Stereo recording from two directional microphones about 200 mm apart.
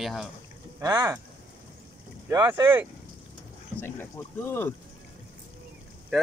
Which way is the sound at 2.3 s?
15° right (ahead or behind).